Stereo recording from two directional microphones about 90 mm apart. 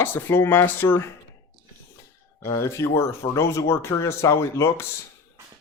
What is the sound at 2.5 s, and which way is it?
Speech, 35° left (ahead or behind).